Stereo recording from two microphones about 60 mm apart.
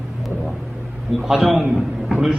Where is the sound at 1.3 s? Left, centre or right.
Centre.